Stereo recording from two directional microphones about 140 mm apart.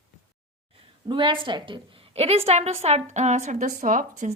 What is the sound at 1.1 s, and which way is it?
A woman's voice, 35° right (ahead or behind).